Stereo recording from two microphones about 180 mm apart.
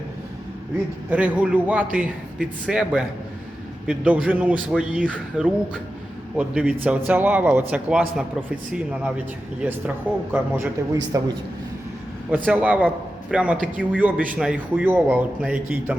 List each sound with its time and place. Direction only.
1.1 s a man's voice: 10° right (ahead or behind)
10.9 s a man's voice: 20° right (ahead or behind)
12.5 s a man's voice: 10° right (ahead or behind)